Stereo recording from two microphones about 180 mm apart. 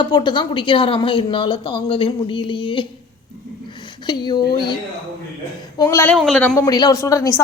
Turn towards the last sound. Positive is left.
turn(degrees=20)  # may be behind; listen again after turning